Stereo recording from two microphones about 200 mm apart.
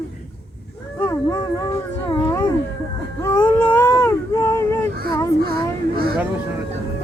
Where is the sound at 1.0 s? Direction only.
15° left (ahead or behind).